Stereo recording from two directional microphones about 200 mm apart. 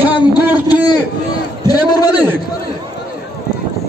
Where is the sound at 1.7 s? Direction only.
20° left (ahead or behind).